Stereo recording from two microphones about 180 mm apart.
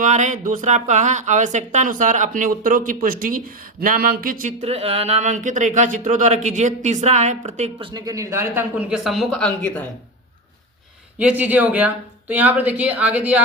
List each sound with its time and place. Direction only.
0.0 s speech: 45° right (ahead or behind); by 9.8 s 5° left (ahead or behind)
11.2 s speech: 10° right (ahead or behind)